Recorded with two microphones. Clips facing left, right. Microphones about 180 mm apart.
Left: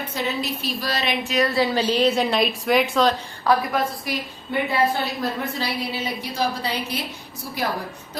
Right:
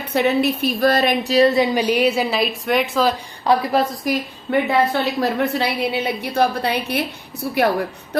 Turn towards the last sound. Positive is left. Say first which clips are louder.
# right 10 dB
turn(degrees=-65)  # may be behind; listen again after turning